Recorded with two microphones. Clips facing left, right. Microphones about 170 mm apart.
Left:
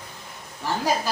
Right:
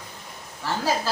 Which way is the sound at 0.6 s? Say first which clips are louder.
Left 1 dB; 15° left (ahead or behind).